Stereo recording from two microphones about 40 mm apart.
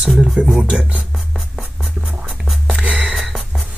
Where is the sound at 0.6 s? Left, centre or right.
Right.